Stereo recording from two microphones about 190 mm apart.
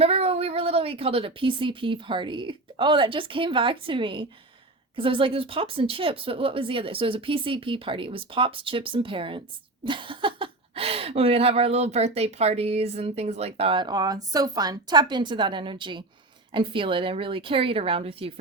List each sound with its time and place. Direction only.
0.0 s speech: 30° right (ahead or behind)